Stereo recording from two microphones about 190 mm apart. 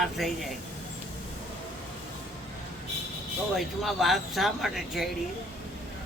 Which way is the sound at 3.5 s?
Centre (ahead or behind).